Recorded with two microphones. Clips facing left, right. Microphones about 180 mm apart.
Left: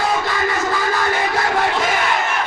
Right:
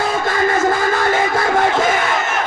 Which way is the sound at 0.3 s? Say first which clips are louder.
Right 5 dB; 50° right (ahead or behind).